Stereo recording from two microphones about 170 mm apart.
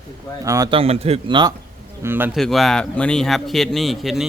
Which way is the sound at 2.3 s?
Centre (ahead or behind).